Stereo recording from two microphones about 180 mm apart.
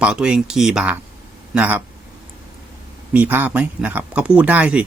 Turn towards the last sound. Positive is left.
turn(degrees=-5)  # may be behind; listen again after turning